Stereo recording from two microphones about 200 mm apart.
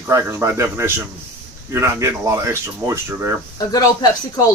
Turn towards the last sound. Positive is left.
turn(degrees=20)  # may be behind; listen again after turning